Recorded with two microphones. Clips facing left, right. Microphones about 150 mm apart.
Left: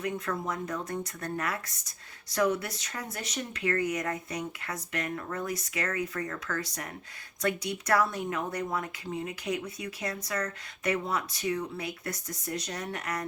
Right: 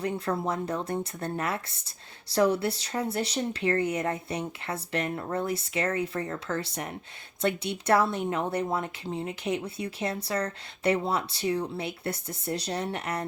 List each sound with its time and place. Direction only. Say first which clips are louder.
0.0 s speech: right 3 dB; 30° right (ahead or behind)